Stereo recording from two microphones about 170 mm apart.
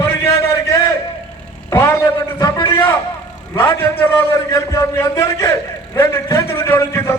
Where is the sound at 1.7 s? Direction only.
15° left (ahead or behind).